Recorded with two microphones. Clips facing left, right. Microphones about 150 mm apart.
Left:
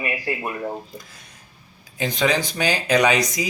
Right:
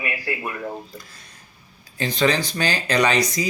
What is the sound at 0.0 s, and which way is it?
A man's voice, 25° left (ahead or behind).